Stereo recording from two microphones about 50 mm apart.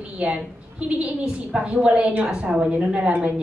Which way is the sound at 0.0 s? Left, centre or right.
Right.